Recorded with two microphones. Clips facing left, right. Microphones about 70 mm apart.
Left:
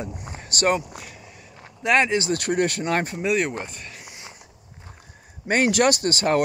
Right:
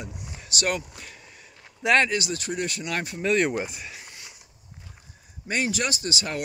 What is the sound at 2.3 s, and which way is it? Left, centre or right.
Speech, left.